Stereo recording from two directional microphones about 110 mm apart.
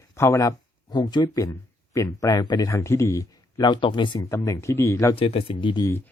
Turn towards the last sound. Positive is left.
turn(degrees=50)  # may be behind; listen again after turning